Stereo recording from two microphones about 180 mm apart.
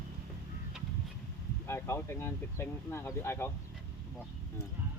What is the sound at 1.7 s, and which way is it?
Speech, 15° left (ahead or behind).